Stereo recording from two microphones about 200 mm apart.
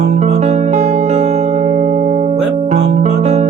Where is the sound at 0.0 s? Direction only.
35° right (ahead or behind).